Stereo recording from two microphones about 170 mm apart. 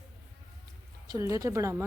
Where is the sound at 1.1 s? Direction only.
15° right (ahead or behind).